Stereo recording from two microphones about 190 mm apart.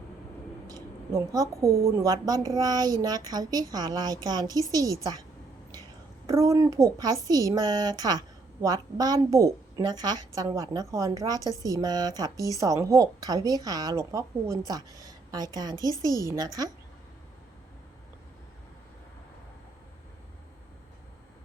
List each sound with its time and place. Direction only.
1.3 s a child's voice: 15° right (ahead or behind)
6.2 s a child's voice: 15° right (ahead or behind)